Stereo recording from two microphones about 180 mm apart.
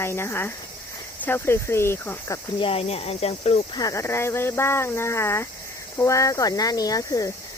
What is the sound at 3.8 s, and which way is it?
Speech, 15° left (ahead or behind).